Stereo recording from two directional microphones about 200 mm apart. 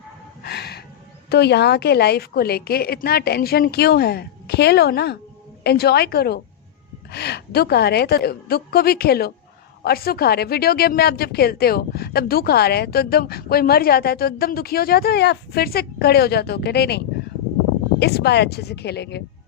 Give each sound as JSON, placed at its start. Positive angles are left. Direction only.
{"t": 0.4, "sound": "a sound", "side_deg": 55}
{"t": 1.3, "sound": "a woman's voice", "side_deg": 55}
{"t": 18.0, "sound": "speech", "side_deg": 55}